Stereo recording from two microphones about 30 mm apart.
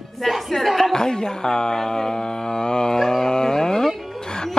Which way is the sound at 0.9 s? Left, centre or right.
Left.